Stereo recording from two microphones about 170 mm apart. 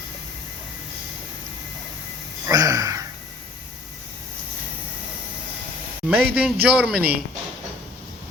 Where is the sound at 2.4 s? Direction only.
20° right (ahead or behind).